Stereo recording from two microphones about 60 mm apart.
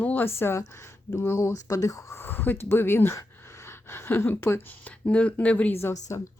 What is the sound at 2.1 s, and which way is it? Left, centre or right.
Speech, left.